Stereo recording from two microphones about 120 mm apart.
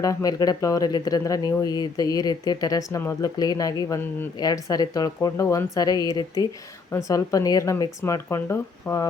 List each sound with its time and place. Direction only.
0.0 s speech: 30° left (ahead or behind)